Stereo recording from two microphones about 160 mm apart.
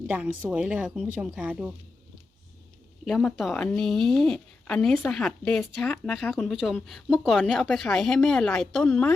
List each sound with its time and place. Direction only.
0.1 s a woman's voice: 10° right (ahead or behind)
3.0 s speech: centre (ahead or behind)